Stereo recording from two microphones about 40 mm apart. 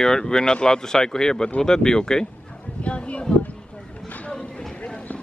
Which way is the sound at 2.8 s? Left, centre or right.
Left.